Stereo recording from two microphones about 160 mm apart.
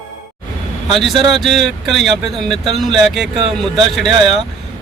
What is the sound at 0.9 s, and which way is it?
Speech, centre (ahead or behind).